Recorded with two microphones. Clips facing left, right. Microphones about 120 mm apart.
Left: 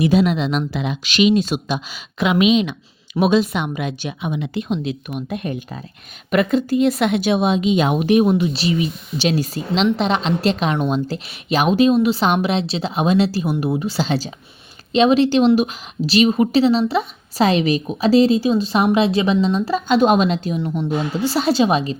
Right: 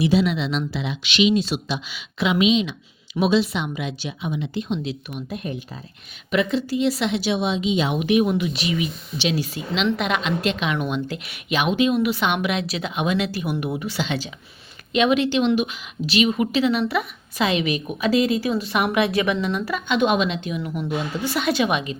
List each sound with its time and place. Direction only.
0.0 s a woman's voice: 50° left (ahead or behind)
6.3 s a woman's voice: 50° left (ahead or behind); by 17.4 s 25° left (ahead or behind)
17.4 s a woman's voice: 40° left (ahead or behind)